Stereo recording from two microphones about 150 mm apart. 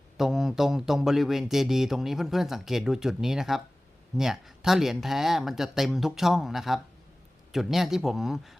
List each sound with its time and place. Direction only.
0.2 s a man's voice: centre (ahead or behind)